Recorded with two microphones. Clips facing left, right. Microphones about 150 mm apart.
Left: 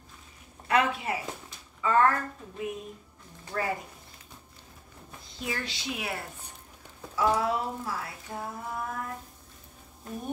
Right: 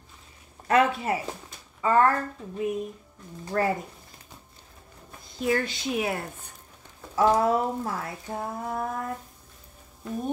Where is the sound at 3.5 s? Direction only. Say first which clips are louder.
Right 6 dB; 45° right (ahead or behind).